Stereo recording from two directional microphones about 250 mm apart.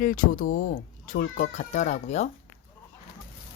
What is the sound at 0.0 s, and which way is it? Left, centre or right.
Speech, left.